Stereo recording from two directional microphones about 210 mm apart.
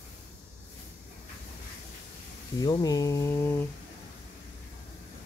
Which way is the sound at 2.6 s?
15° left (ahead or behind).